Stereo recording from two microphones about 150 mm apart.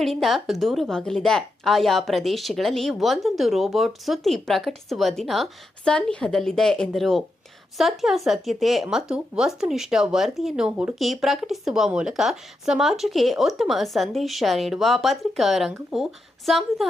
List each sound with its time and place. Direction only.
0.0 s speech: centre (ahead or behind)